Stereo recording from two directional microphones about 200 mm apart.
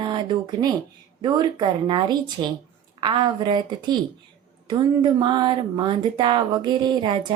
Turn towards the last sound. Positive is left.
turn(degrees=-20)  # may be behind; listen again after turning